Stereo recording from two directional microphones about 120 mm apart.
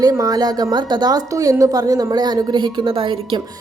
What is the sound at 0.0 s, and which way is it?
A woman's voice, 30° right (ahead or behind).